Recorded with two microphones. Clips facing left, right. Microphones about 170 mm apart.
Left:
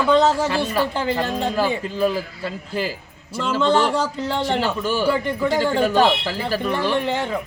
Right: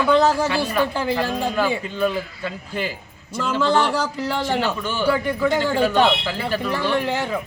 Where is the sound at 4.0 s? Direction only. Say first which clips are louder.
Left 1 dB; 25° left (ahead or behind).